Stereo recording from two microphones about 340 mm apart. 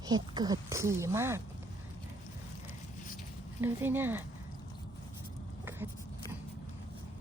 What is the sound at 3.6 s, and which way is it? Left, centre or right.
Speech, centre.